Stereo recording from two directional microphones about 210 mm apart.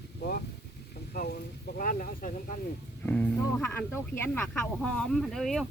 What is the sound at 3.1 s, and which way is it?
Speech, 5° left (ahead or behind).